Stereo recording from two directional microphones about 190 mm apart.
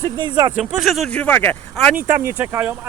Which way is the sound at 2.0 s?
10° right (ahead or behind).